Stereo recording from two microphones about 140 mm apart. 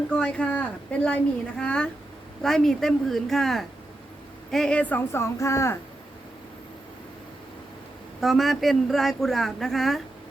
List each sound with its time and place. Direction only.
0.2 s a woman's voice: 10° left (ahead or behind)
8.2 s a woman's voice: centre (ahead or behind)